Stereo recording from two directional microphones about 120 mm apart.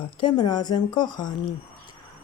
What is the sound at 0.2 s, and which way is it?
Speech, 40° left (ahead or behind).